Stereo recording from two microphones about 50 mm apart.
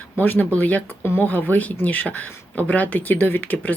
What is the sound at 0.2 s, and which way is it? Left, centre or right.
Speech, left.